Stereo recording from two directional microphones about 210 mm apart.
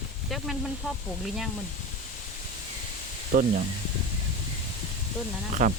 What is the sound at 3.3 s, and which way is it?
Speech, 40° right (ahead or behind).